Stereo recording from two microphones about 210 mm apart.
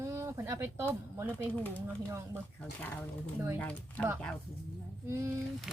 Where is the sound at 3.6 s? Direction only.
5° left (ahead or behind).